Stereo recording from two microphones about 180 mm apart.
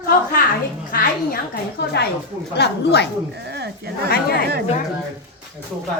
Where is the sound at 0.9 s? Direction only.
50° left (ahead or behind); by 3.1 s 70° left (ahead or behind).